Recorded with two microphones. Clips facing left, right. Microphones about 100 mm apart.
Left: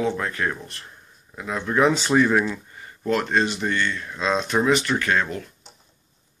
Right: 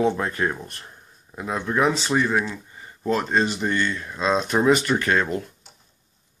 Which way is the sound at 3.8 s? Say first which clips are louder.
Right 1 dB; 25° right (ahead or behind).